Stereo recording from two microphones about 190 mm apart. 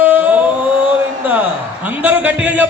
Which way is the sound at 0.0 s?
10° right (ahead or behind).